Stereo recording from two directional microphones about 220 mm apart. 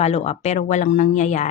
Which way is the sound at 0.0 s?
30° left (ahead or behind).